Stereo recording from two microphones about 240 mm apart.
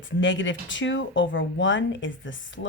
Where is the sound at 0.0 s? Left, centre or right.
Left.